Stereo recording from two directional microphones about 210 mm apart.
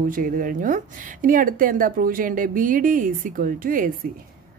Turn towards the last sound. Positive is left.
turn(degrees=-40)  # may be behind; listen again after turning